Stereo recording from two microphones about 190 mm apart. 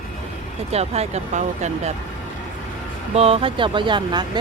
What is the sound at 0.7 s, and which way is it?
Speech, 35° right (ahead or behind).